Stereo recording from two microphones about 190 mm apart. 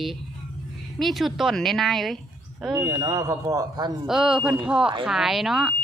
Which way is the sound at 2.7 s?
20° right (ahead or behind).